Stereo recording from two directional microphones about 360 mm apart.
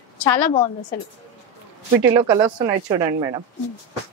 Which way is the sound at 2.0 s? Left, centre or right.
Centre.